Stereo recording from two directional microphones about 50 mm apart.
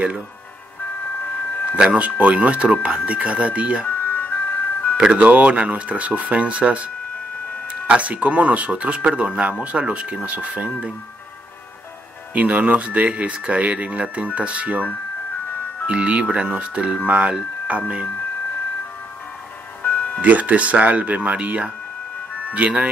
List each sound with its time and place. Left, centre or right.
1.8 s speech: right
3.8 s ice cream truck: left
4.9 s speech: right
12.4 s speech: right
15.9 s speech: right
19.8 s music: left
20.2 s speech: right